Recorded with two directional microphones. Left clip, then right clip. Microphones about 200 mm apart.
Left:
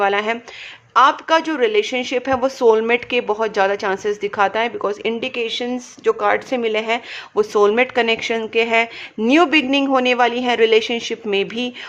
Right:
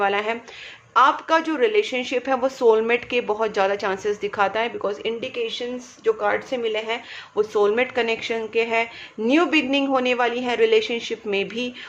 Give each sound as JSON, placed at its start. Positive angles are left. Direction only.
{"t": 0.0, "sound": "speech", "side_deg": 25}